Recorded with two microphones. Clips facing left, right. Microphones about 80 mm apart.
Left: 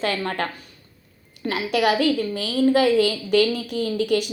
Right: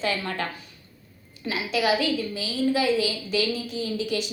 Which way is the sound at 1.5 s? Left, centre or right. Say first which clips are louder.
Left 3 dB; left.